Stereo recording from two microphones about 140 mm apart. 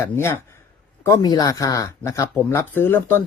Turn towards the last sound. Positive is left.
turn(degrees=15)  # may be behind; listen again after turning